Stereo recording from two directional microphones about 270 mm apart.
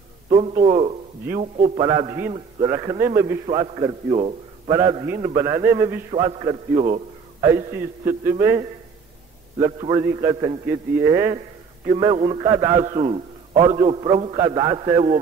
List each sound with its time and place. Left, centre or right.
0.3 s a man's voice: right
7.4 s a man's voice: centre
12.8 s a man's voice: right